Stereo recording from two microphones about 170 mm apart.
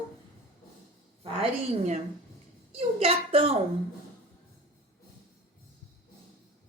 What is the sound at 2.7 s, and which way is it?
Speech, 35° right (ahead or behind).